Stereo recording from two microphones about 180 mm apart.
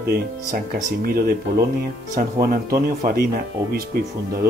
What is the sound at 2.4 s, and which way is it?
Speech, 55° right (ahead or behind).